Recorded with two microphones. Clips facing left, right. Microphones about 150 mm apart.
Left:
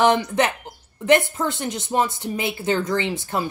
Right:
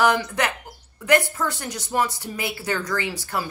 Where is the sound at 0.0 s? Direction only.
25° left (ahead or behind).